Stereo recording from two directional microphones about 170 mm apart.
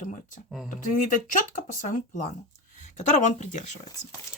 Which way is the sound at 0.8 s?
50° left (ahead or behind).